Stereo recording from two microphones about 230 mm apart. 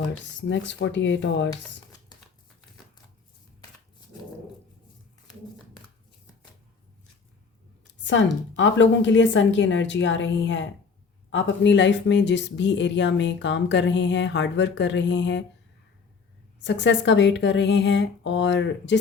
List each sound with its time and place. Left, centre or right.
0.4 s speech: left
8.0 s speech: left
16.6 s speech: left